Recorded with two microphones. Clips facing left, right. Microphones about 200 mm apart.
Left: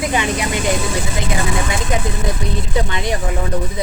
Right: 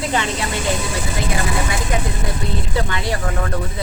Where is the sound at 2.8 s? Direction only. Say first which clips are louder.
Left 3 dB; 20° left (ahead or behind).